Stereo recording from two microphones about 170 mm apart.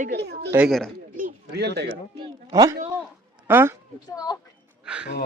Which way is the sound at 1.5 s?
75° right (ahead or behind).